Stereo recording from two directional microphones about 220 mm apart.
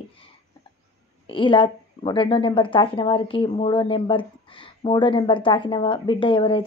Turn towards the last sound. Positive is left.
turn(degrees=25)  # may be behind; listen again after turning